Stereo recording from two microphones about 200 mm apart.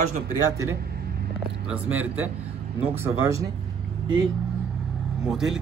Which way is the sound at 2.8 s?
10° right (ahead or behind).